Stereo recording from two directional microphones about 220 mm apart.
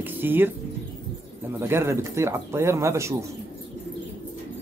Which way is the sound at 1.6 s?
10° right (ahead or behind).